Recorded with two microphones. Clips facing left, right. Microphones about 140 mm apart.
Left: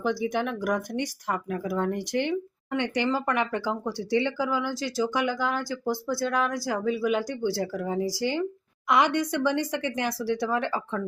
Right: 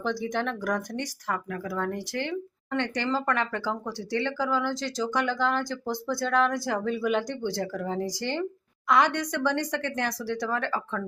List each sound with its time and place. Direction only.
0.0 s speech: 10° left (ahead or behind)